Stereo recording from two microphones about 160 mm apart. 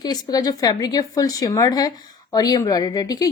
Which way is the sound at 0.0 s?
25° left (ahead or behind).